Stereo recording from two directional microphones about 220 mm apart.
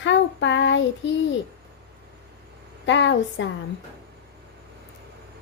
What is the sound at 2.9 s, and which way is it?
Speech, 55° left (ahead or behind).